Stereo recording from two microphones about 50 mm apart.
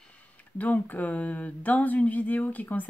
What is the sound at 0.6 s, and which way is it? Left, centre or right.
Speech, left.